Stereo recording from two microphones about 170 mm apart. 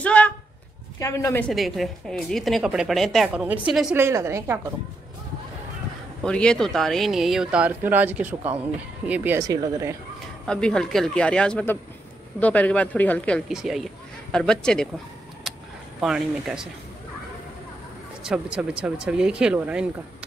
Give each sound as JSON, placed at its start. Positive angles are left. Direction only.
{"t": 0.0, "sound": "speech", "side_deg": 10}
{"t": 1.5, "sound": "speech", "side_deg": 0}
{"t": 3.9, "sound": "a woman's voice", "side_deg": -15}
{"t": 6.2, "sound": "speech", "side_deg": 5}
{"t": 9.4, "sound": "speech", "side_deg": -20}
{"t": 10.4, "sound": "speech", "side_deg": 5}
{"t": 13.5, "sound": "speech", "side_deg": -5}
{"t": 15.5, "sound": "vehicle", "side_deg": 0}
{"t": 16.0, "sound": "speech", "side_deg": -5}
{"t": 18.2, "sound": "speech", "side_deg": -5}